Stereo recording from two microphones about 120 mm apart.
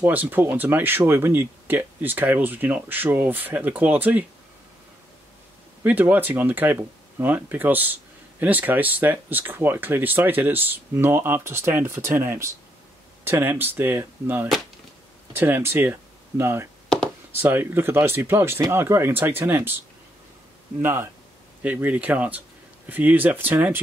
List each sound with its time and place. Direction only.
0.0 s speech: 15° right (ahead or behind)
5.9 s speech: 15° right (ahead or behind)
20.8 s speech: 20° right (ahead or behind)